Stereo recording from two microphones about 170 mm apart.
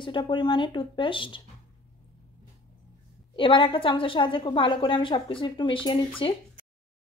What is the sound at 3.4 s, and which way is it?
A woman's voice, 30° left (ahead or behind).